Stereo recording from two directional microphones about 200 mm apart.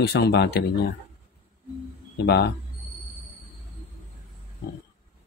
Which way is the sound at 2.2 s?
50° left (ahead or behind).